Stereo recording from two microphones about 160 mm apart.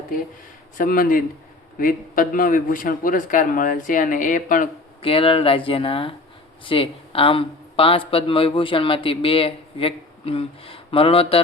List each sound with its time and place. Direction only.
0.8 s a man's voice: 60° left (ahead or behind)
5.0 s speech: 35° left (ahead or behind)